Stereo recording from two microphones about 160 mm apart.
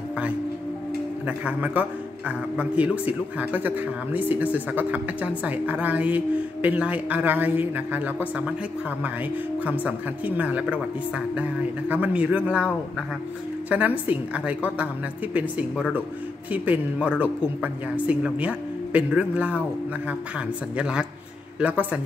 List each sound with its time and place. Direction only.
1.2 s a man's voice: 10° right (ahead or behind)
9.7 s a man's voice: 10° right (ahead or behind)
13.7 s a man's voice: 10° right (ahead or behind)
20.7 s a man's voice: 5° right (ahead or behind)